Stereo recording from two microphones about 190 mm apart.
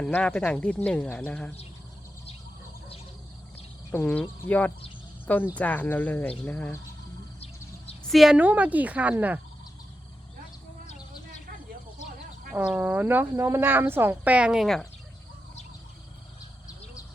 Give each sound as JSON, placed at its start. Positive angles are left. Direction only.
{"t": 0.0, "sound": "speech", "side_deg": 10}
{"t": 3.9, "sound": "speech", "side_deg": 10}
{"t": 7.3, "sound": "bird", "side_deg": 30}
{"t": 8.0, "sound": "speech", "side_deg": 0}
{"t": 12.5, "sound": "speech", "side_deg": -5}